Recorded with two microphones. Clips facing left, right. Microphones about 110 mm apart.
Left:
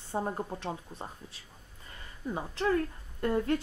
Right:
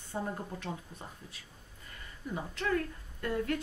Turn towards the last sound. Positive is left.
turn(degrees=30)  # may be behind; listen again after turning